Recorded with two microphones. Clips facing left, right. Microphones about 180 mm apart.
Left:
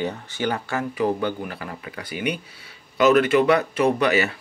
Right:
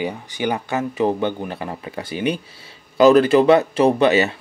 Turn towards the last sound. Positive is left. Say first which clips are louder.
# right 4 dB
turn(degrees=-25)  # may be behind; listen again after turning